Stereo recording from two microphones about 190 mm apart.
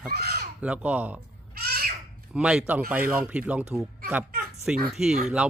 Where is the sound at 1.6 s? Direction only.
55° right (ahead or behind).